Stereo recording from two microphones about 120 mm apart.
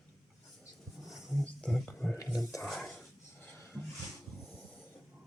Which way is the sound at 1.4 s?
5° left (ahead or behind).